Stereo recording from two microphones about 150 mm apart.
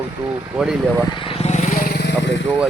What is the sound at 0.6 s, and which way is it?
Speech, 5° right (ahead or behind).